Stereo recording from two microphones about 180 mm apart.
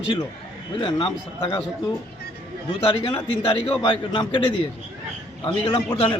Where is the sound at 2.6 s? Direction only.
25° left (ahead or behind).